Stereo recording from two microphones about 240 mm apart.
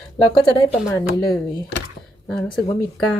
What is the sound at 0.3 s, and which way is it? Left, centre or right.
Speech, centre.